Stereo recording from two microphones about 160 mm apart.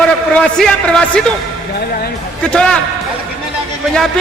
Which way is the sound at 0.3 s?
5° left (ahead or behind).